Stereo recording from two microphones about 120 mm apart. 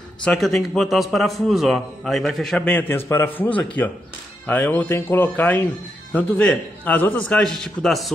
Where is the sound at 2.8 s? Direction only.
20° left (ahead or behind).